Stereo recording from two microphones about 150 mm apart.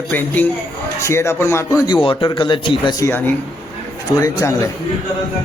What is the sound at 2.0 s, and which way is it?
Speech, 35° left (ahead or behind).